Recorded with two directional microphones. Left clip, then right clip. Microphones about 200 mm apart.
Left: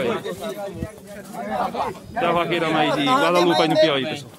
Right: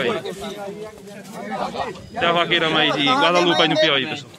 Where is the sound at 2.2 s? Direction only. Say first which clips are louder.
Right 3 dB; 5° left (ahead or behind).